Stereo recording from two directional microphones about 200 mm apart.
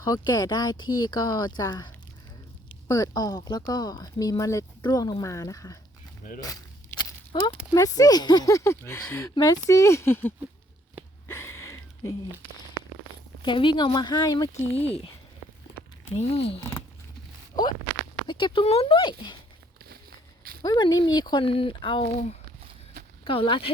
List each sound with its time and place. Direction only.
0.0 s speech: 20° left (ahead or behind)
6.4 s walk: 20° left (ahead or behind)
7.7 s speech: 20° left (ahead or behind)
11.3 s a sound: 10° left (ahead or behind)
13.4 s speech: 25° left (ahead or behind)
14.8 s speech: 30° left (ahead or behind)
16.1 s speech: 30° left (ahead or behind)
18.3 s speech: 25° left (ahead or behind)
19.8 s walk: 50° right (ahead or behind)
20.6 s speech: 20° left (ahead or behind)
23.2 s speech: 25° left (ahead or behind)